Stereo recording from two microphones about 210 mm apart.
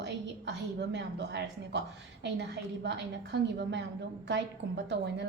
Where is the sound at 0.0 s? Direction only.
55° right (ahead or behind).